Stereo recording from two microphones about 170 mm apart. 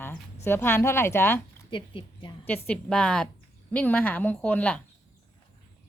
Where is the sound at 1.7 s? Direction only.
30° left (ahead or behind).